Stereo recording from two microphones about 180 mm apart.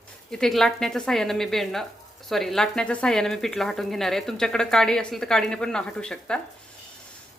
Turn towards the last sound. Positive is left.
turn(degrees=5)  # may be behind; listen again after turning